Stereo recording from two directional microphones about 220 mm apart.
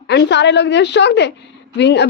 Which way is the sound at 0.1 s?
50° left (ahead or behind).